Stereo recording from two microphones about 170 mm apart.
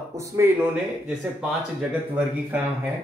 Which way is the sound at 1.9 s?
10° right (ahead or behind).